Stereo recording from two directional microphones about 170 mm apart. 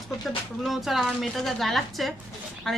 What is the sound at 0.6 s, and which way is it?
Speech, centre (ahead or behind).